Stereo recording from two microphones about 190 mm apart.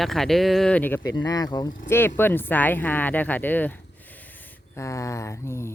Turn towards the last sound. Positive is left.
turn(degrees=15)  # may be behind; listen again after turning